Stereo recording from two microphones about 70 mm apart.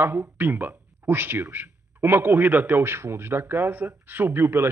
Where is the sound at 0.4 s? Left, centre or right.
Right.